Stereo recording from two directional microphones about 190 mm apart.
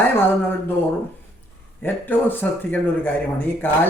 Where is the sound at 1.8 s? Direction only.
10° left (ahead or behind).